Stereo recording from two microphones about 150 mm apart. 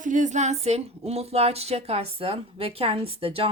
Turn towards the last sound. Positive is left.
turn(degrees=-40)  # may be behind; listen again after turning